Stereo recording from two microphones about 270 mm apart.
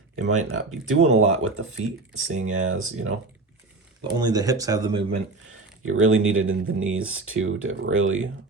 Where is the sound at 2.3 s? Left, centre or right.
Right.